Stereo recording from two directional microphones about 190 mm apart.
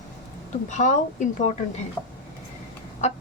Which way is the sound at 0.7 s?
40° left (ahead or behind).